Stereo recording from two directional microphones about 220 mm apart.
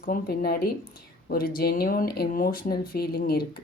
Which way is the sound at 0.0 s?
40° left (ahead or behind).